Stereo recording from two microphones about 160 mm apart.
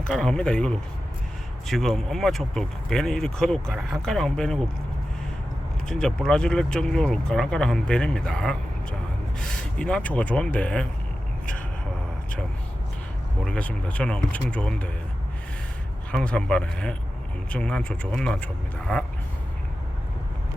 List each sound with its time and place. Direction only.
0.1 s speech: 5° left (ahead or behind)
5.9 s speech: 5° left (ahead or behind)
13.4 s speech: 10° left (ahead or behind)
16.1 s speech: 5° left (ahead or behind)